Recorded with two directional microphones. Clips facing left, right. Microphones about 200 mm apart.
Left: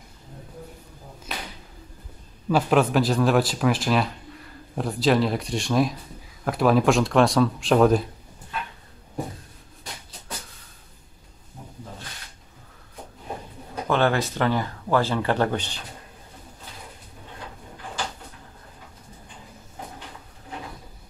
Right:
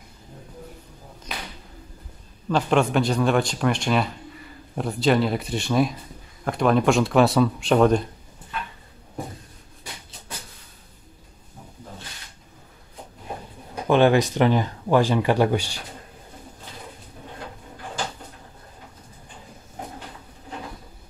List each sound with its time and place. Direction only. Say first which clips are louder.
1.3 s a sound: even; 5° left (ahead or behind)
2.5 s speech: left 1 dB; 5° left (ahead or behind)
13.8 s speech: right 5 dB; 15° right (ahead or behind)